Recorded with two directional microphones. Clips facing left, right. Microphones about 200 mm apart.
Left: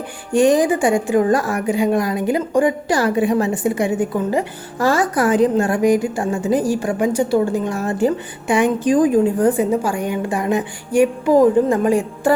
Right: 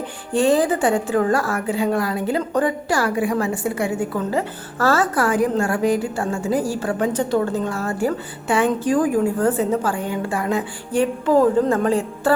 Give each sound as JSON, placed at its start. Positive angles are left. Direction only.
{"t": 0.3, "sound": "a woman's voice", "side_deg": 15}